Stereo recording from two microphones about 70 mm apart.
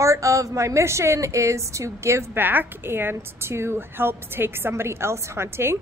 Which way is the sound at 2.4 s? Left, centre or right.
Right.